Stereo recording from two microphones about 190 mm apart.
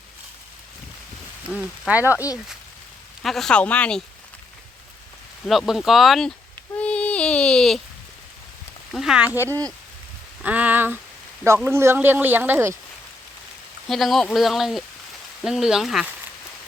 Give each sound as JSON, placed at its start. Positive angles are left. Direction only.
{"t": 1.9, "sound": "speech", "side_deg": -10}
{"t": 2.1, "sound": "speech", "side_deg": 15}
{"t": 3.2, "sound": "speech", "side_deg": 0}
{"t": 5.5, "sound": "speech", "side_deg": 0}
{"t": 6.7, "sound": "a sound", "side_deg": 5}
{"t": 8.9, "sound": "speech", "side_deg": 0}
{"t": 13.8, "sound": "speech", "side_deg": 0}